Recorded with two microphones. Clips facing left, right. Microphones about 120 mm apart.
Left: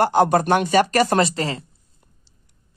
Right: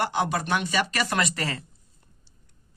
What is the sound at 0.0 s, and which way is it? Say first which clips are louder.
Speech: left 9 dB; 45° left (ahead or behind).